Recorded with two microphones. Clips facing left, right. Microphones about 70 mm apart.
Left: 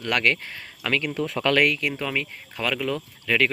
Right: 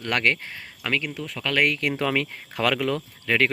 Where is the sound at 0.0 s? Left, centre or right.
Right.